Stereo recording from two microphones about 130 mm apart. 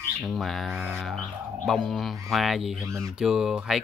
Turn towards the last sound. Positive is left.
turn(degrees=-5)  # may be behind; listen again after turning